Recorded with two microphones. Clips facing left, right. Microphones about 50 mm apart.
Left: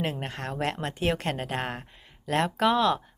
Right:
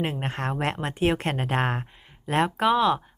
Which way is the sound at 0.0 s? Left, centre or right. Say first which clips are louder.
Right 3 dB; right.